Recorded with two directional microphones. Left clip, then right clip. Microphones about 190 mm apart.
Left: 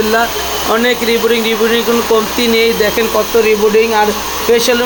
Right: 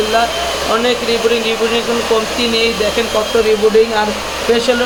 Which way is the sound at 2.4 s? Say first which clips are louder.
Left 3 dB; 30° left (ahead or behind).